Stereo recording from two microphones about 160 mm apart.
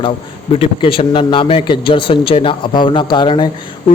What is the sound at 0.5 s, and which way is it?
A man's voice, 35° left (ahead or behind).